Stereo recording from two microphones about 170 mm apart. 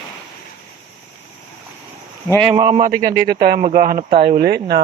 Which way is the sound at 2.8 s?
55° right (ahead or behind).